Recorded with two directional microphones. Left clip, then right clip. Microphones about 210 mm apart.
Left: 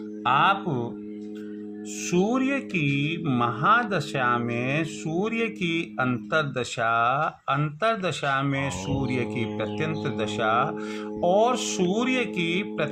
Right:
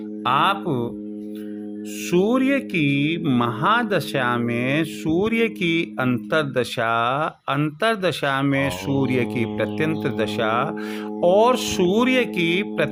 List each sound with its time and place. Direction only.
0.3 s speech: 40° right (ahead or behind)
2.0 s speech: 35° right (ahead or behind)